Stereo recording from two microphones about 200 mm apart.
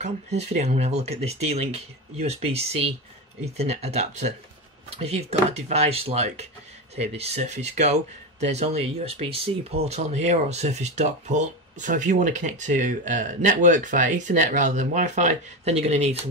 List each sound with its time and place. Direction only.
0.0 s speech: 35° right (ahead or behind)